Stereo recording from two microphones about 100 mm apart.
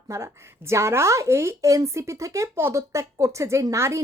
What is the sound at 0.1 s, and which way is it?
A woman's voice, 30° right (ahead or behind).